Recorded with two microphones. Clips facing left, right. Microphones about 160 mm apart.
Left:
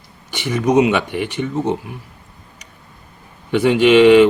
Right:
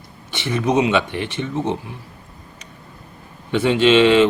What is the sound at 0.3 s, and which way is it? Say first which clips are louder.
Speech: left 3 dB; 15° left (ahead or behind).